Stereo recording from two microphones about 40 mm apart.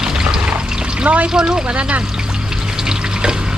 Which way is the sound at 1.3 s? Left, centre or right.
Right.